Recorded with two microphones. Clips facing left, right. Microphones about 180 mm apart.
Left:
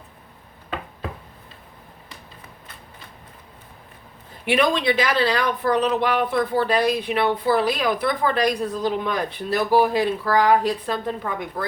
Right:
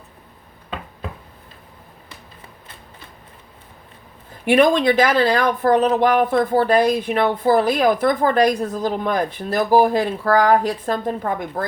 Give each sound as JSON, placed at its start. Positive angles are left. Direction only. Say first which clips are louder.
{"t": 4.4, "sound": "speech", "louder": "right 5 dB", "side_deg": -45}